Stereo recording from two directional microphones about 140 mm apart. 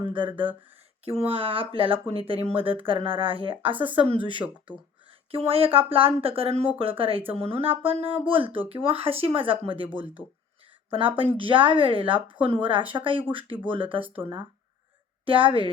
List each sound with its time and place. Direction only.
0.0 s speech: 35° right (ahead or behind)
15.2 s speech: 40° right (ahead or behind)